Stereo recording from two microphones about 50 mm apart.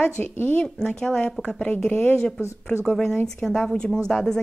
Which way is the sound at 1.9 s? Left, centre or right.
Left.